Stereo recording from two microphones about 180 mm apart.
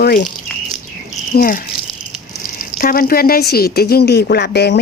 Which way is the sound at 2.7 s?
50° left (ahead or behind).